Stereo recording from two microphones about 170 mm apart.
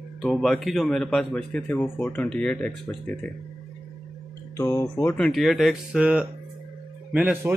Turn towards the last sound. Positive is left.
turn(degrees=-5)  # may be behind; listen again after turning